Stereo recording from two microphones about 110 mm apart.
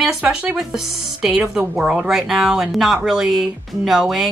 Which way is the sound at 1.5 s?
5° right (ahead or behind).